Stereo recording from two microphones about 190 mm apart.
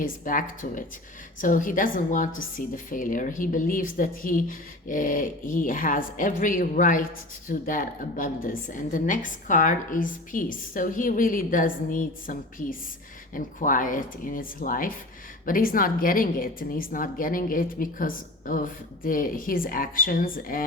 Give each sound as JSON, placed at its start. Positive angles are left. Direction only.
{"t": 0.0, "sound": "a woman's voice", "side_deg": 45}